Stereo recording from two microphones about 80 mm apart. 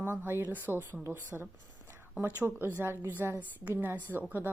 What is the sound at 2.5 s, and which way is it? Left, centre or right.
A woman's voice, right.